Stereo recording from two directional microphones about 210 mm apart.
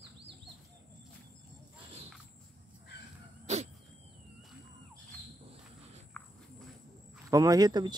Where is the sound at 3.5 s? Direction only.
30° right (ahead or behind).